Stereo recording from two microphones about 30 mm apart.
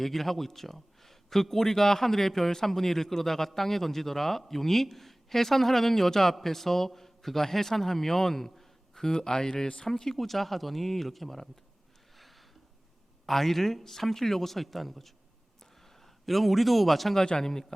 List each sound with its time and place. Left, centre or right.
0.0 s a man's voice: centre; by 9.6 s left
9.9 s a man's voice: centre
12.1 s a sound: centre
13.2 s a man's voice: centre
17.4 s a man's voice: centre